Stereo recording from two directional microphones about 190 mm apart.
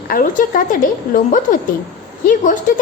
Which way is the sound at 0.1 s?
45° left (ahead or behind).